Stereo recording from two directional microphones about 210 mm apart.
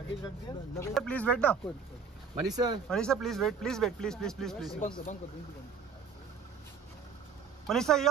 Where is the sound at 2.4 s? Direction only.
20° right (ahead or behind).